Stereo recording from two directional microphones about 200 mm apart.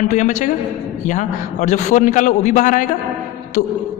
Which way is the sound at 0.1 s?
40° left (ahead or behind).